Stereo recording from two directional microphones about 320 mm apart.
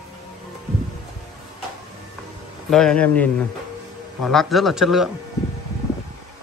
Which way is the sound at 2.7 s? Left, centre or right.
Centre.